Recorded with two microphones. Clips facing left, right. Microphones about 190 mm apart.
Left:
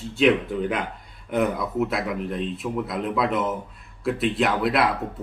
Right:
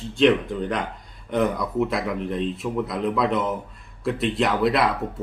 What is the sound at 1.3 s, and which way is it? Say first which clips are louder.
Speech: right 1 dB; 5° left (ahead or behind).